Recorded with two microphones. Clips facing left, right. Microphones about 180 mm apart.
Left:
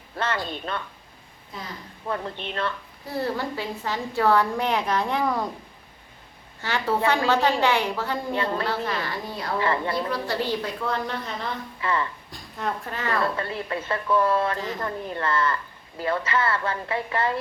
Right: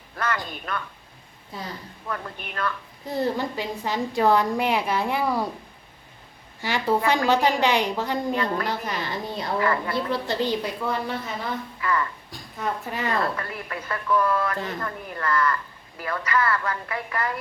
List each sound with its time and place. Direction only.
0.2 s a woman's voice: 25° left (ahead or behind)
2.0 s a woman's voice: 25° left (ahead or behind)
3.1 s a woman's voice: 15° right (ahead or behind)
6.6 s a woman's voice: 15° right (ahead or behind)
9.6 s a woman's voice: 25° left (ahead or behind)
10.1 s a woman's voice: 20° right (ahead or behind)
11.8 s a woman's voice: 25° left (ahead or behind)
12.3 s a woman's voice: centre (ahead or behind)
12.9 s a woman's voice: 15° right (ahead or behind)
13.3 s a woman's voice: 25° left (ahead or behind)